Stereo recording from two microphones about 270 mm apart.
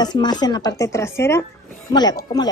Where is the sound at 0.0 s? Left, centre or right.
Centre.